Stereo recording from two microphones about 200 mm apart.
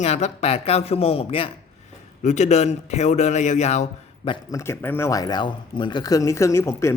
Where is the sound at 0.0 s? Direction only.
35° left (ahead or behind).